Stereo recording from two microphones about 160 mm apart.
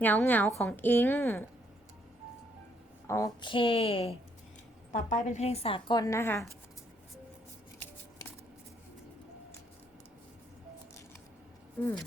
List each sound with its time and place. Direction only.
0.0 s a woman's voice: 10° left (ahead or behind)
3.1 s speech: 20° left (ahead or behind)
3.4 s a woman's voice: 30° left (ahead or behind)
4.9 s a woman's voice: 50° left (ahead or behind); by 6.4 s 15° left (ahead or behind)